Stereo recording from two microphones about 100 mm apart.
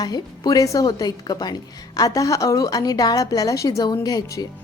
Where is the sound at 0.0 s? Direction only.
40° left (ahead or behind).